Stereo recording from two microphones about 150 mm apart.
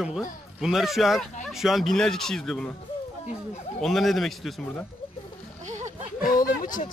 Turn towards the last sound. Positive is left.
turn(degrees=60)  # may be behind; listen again after turning